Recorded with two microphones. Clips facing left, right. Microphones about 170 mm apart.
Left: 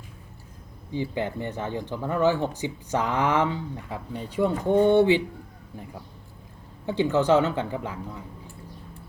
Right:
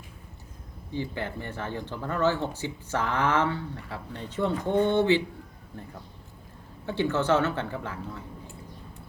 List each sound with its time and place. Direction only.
0.9 s speech: 15° left (ahead or behind)
6.8 s speech: 15° left (ahead or behind)